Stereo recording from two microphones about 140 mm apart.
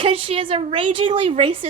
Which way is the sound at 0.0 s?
40° right (ahead or behind).